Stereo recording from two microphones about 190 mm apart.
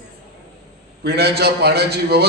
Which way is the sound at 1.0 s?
60° right (ahead or behind).